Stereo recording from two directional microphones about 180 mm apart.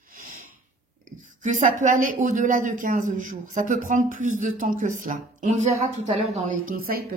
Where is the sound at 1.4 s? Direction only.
45° right (ahead or behind).